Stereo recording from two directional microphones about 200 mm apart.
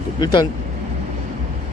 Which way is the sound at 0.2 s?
20° left (ahead or behind).